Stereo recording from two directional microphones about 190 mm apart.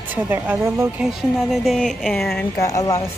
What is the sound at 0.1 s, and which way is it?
Speech, 10° right (ahead or behind).